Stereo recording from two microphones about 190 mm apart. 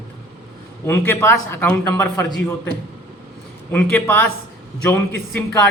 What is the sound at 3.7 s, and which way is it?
Speech, 5° left (ahead or behind).